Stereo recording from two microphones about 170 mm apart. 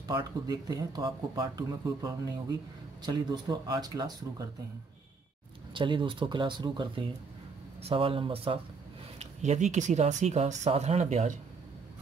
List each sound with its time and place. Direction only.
0.0 s speech: 25° right (ahead or behind)
5.7 s speech: 30° right (ahead or behind)
9.2 s speech: 45° right (ahead or behind)